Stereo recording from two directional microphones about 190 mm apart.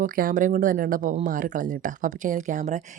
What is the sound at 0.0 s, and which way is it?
Speech, 45° right (ahead or behind).